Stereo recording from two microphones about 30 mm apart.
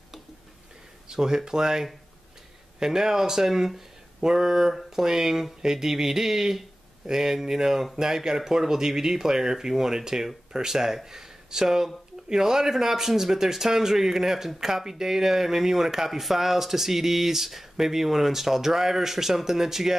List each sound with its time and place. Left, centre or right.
1.0 s speech: right